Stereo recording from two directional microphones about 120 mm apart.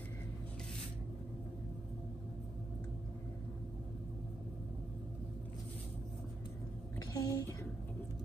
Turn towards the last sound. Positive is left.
turn(degrees=30)  # may be behind; listen again after turning